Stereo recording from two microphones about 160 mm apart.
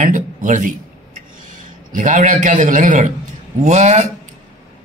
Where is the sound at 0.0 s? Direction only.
55° right (ahead or behind).